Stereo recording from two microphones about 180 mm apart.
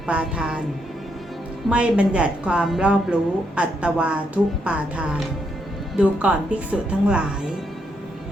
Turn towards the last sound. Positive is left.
turn(degrees=-5)  # may be behind; listen again after turning